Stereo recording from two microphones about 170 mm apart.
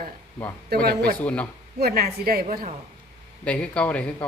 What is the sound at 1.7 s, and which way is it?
Speech, 65° right (ahead or behind).